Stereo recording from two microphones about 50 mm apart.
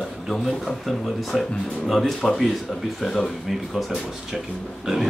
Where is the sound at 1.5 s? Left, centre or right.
Centre.